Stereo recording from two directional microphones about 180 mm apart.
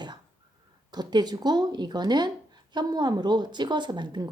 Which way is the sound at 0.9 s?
25° right (ahead or behind).